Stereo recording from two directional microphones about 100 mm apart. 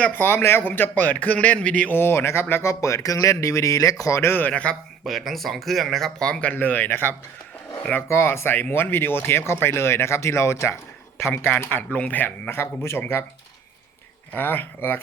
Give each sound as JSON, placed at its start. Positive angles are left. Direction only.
{"t": 0.0, "sound": "a man's voice", "side_deg": 20}
{"t": 5.0, "sound": "a man's voice", "side_deg": 0}
{"t": 14.3, "sound": "a man's voice", "side_deg": 20}